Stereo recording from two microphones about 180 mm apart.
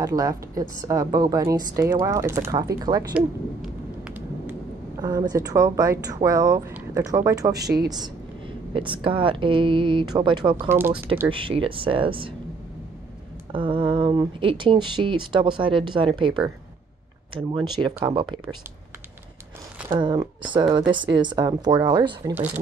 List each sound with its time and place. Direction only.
0.0 s speech: 20° right (ahead or behind)
3.2 s a sound: 10° right (ahead or behind)
5.0 s a woman's voice: 20° right (ahead or behind)
13.5 s speech: 30° right (ahead or behind)
19.9 s speech: 25° right (ahead or behind)